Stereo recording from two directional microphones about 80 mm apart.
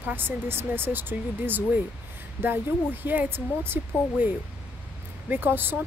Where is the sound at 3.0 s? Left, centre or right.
Right.